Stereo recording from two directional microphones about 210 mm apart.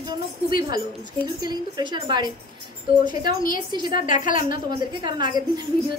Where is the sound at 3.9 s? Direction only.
40° left (ahead or behind).